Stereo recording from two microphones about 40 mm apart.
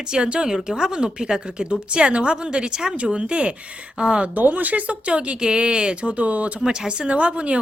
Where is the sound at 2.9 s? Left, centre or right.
Right.